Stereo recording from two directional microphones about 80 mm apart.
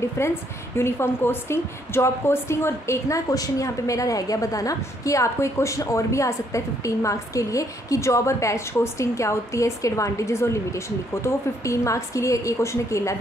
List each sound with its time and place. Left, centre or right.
0.2 s a woman's voice: left